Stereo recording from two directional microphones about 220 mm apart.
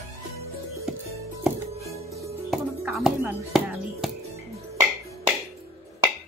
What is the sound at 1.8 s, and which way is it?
Music, 15° right (ahead or behind).